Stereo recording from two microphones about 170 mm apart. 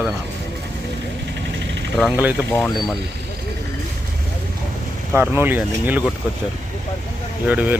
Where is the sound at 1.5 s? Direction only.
90° right.